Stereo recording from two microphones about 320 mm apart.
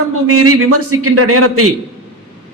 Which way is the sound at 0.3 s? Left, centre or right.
Right.